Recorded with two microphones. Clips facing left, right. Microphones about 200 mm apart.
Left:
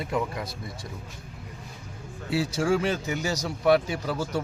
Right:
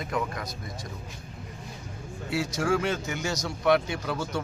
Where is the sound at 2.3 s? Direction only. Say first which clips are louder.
Left 2 dB; 35° left (ahead or behind).